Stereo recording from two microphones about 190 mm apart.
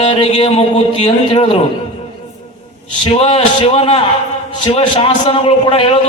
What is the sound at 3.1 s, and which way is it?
A man's voice, 30° left (ahead or behind).